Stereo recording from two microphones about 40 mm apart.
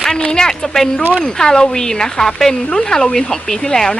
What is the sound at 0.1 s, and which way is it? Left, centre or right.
Speech, centre.